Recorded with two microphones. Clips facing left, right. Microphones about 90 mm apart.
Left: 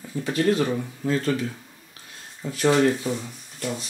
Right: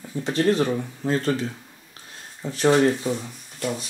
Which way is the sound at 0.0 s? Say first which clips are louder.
Right 1 dB; 20° right (ahead or behind).